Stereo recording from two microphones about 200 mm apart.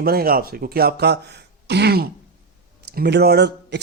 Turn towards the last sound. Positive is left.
turn(degrees=-55)  # may be behind; listen again after turning